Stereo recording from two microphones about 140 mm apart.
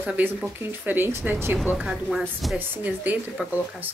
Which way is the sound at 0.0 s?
10° right (ahead or behind).